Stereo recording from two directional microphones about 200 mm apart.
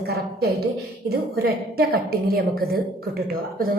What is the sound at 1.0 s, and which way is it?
A woman's voice, 50° right (ahead or behind).